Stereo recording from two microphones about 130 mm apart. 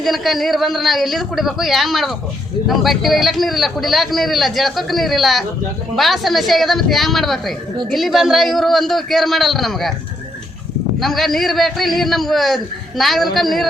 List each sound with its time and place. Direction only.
0.0 s a man's voice: centre (ahead or behind)
11.0 s a man's voice: centre (ahead or behind)